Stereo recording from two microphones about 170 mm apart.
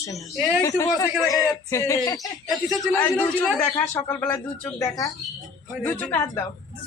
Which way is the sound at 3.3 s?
10° left (ahead or behind).